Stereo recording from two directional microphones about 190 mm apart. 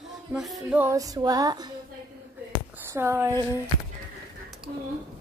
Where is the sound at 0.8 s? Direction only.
15° right (ahead or behind).